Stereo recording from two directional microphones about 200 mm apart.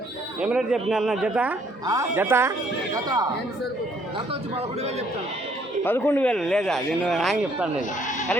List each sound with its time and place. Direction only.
0.3 s speech: 5° right (ahead or behind)
5.8 s speech: 10° left (ahead or behind)